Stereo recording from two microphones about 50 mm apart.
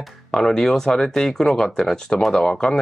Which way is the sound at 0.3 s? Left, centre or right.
Centre.